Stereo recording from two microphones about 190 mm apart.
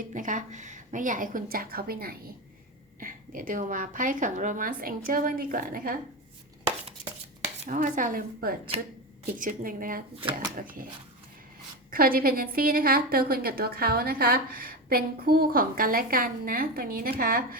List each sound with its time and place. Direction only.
0.1 s a woman's voice: 40° right (ahead or behind)
6.8 s dishes: 30° right (ahead or behind); by 8.5 s 50° right (ahead or behind)
9.4 s a woman's voice: 45° right (ahead or behind)
11.9 s a woman's voice: 50° right (ahead or behind)